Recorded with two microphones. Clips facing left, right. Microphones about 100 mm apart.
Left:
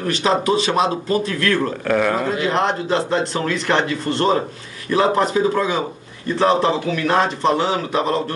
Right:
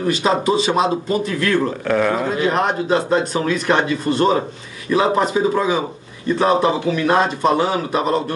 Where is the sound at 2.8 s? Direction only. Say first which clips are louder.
Right 2 dB; 15° right (ahead or behind).